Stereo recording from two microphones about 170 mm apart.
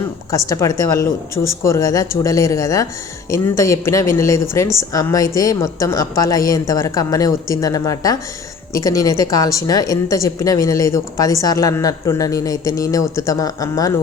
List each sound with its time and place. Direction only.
0.3 s a woman's voice: 20° left (ahead or behind)